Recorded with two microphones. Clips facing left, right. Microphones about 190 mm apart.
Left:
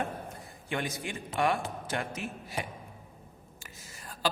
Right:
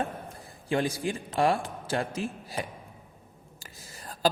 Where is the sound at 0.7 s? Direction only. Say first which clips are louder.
Right 7 dB; 30° right (ahead or behind).